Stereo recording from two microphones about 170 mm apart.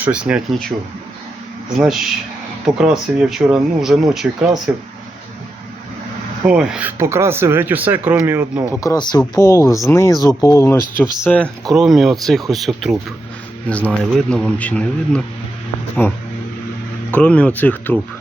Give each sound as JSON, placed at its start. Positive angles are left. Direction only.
{"t": 0.0, "sound": "speech", "side_deg": -5}
{"t": 1.8, "sound": "speech", "side_deg": -5}
{"t": 6.4, "sound": "speech", "side_deg": -5}
{"t": 8.7, "sound": "speech", "side_deg": 20}
{"t": 17.2, "sound": "speech", "side_deg": 5}